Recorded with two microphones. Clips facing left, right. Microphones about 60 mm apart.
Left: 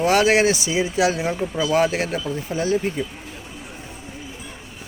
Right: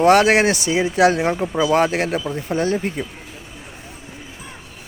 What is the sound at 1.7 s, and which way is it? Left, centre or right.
Speech, right.